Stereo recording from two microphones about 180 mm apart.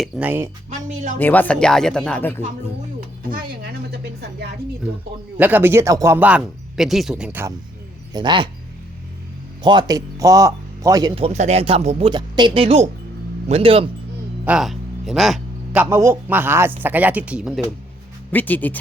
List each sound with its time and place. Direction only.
0.2 s speech: 10° right (ahead or behind)
1.2 s speech: 10° left (ahead or behind)
3.6 s a sound: 65° right (ahead or behind)
5.4 s speech: 10° right (ahead or behind)
8.1 s speech: 25° right (ahead or behind)
9.6 s speech: 25° right (ahead or behind)
14.4 s speech: 5° right (ahead or behind)
18.3 s speech: 10° left (ahead or behind)